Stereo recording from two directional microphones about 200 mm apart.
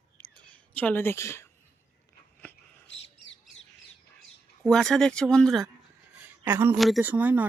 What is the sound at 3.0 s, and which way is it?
Bird, 65° left (ahead or behind).